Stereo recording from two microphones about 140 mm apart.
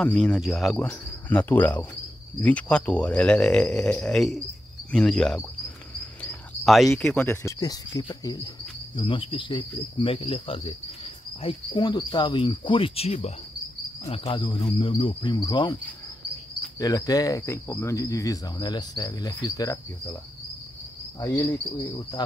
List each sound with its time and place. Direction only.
0.0 s speech: 5° left (ahead or behind)
0.8 s speech: 10° left (ahead or behind)
6.6 s speech: centre (ahead or behind)
7.2 s cricket: 25° left (ahead or behind)
8.9 s cricket: 40° left (ahead or behind)
21.2 s cricket: 25° left (ahead or behind)